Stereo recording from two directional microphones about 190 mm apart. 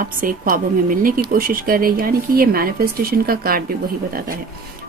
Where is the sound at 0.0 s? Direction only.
45° right (ahead or behind).